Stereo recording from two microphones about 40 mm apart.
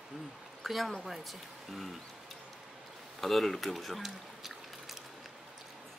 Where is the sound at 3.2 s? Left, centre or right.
Centre.